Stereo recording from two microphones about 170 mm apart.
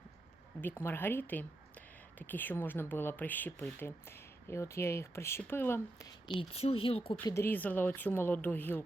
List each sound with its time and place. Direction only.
0.6 s speech: 10° left (ahead or behind)
6.2 s speech: 35° left (ahead or behind)
7.3 s speech: 15° left (ahead or behind)